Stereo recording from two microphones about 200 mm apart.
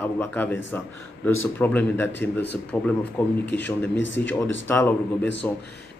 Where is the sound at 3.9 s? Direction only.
65° left (ahead or behind).